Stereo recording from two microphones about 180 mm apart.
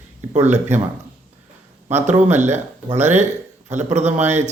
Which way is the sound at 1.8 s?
40° right (ahead or behind).